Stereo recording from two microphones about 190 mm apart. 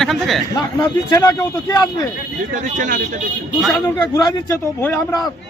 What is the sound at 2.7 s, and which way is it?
Speech, 45° right (ahead or behind).